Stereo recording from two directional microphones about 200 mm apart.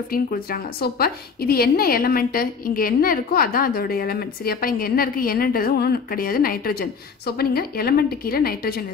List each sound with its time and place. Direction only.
0.1 s a woman's voice: 45° left (ahead or behind)